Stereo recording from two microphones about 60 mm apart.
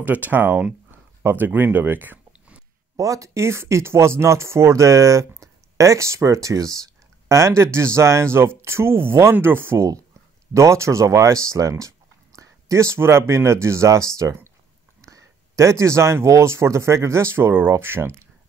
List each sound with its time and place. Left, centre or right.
0.0 s speech: right
0.9 s a sound: right
3.0 s speech: right
10.5 s speech: right